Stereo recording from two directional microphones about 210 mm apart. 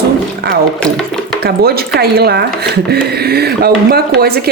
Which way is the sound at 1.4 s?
50° right (ahead or behind).